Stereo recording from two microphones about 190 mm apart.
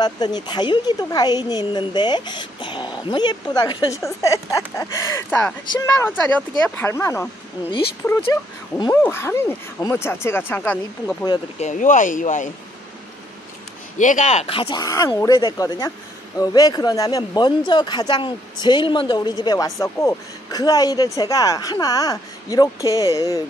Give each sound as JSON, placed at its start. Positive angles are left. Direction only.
{"t": 0.0, "sound": "a woman's voice", "side_deg": 20}
{"t": 8.3, "sound": "speech", "side_deg": 20}
{"t": 11.6, "sound": "speech", "side_deg": 40}
{"t": 13.9, "sound": "a woman's voice", "side_deg": 40}